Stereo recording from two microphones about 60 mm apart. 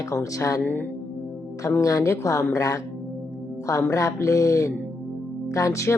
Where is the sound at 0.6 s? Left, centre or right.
Left.